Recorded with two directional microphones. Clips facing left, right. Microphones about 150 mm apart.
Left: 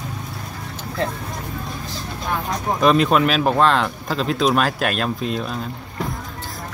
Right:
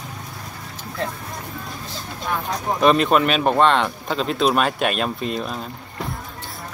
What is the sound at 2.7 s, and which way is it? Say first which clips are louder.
Speech: even; centre (ahead or behind).